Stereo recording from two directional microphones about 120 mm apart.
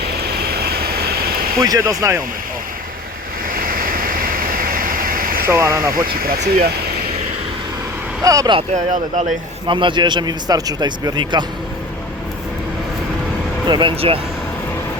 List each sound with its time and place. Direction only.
1.5 s speech: 30° right (ahead or behind)
5.5 s speech: 25° right (ahead or behind)
8.2 s speech: 30° right (ahead or behind)
8.7 s speech: 85° right
9.6 s a man's voice: 40° right (ahead or behind)
13.7 s speech: 40° right (ahead or behind)
13.9 s speech: 55° right (ahead or behind)